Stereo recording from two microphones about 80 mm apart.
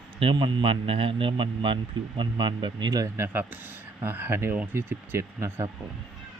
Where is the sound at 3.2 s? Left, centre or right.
Right.